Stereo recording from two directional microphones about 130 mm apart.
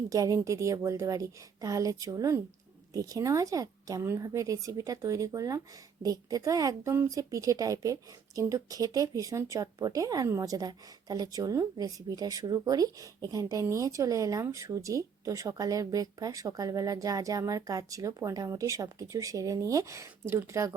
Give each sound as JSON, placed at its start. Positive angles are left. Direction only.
{"t": 0.1, "sound": "speech", "side_deg": -25}